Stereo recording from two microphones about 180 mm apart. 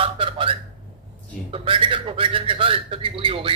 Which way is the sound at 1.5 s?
30° right (ahead or behind).